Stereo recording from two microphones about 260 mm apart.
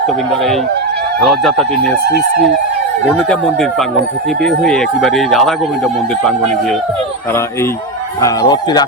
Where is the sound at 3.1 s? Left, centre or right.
Centre.